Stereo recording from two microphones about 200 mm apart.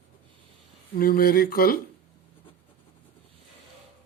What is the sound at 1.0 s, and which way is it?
Speech, 45° left (ahead or behind).